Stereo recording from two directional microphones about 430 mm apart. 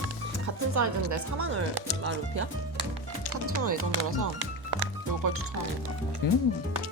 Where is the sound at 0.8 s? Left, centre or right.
Right.